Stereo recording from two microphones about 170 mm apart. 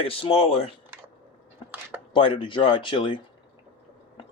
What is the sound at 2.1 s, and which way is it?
Speech, 30° left (ahead or behind).